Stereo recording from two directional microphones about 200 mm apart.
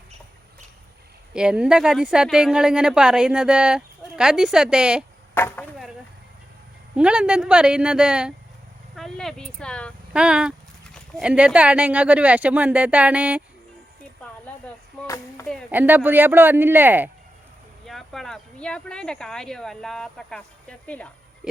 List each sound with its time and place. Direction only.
1.3 s speech: 5° right (ahead or behind)
5.3 s speech: 10° left (ahead or behind)
6.9 s speech: 5° right (ahead or behind)
9.0 s a sound: centre (ahead or behind)
10.1 s speech: 5° right (ahead or behind)
15.0 s chop: 15° left (ahead or behind)
15.7 s speech: 10° right (ahead or behind)
17.8 s speech: centre (ahead or behind)